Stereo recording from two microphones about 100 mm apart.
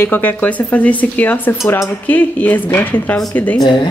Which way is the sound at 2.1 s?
20° left (ahead or behind).